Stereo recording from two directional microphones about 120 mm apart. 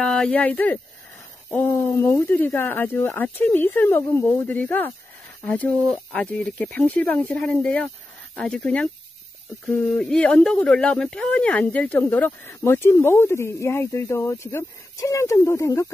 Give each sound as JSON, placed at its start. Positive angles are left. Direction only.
{"t": 0.0, "sound": "speech", "side_deg": 5}